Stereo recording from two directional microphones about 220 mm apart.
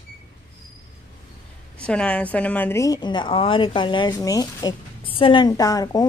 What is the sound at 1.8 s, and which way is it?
A woman's voice, 5° left (ahead or behind).